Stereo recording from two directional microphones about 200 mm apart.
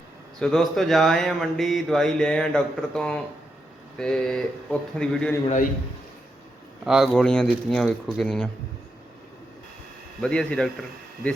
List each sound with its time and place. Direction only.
0.3 s speech: centre (ahead or behind)
6.8 s speech: centre (ahead or behind)
10.2 s speech: 5° left (ahead or behind)